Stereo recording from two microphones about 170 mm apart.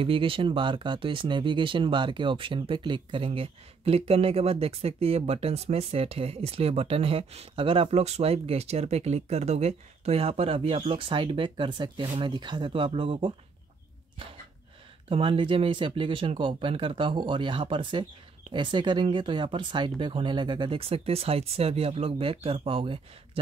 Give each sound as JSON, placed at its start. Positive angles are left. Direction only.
{"t": 0.0, "sound": "speech", "side_deg": -30}
{"t": 15.0, "sound": "speech", "side_deg": -30}